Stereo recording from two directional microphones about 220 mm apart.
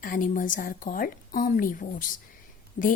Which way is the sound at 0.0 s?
40° left (ahead or behind).